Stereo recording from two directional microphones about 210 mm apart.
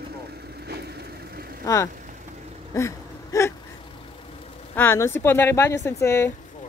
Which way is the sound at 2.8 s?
15° left (ahead or behind).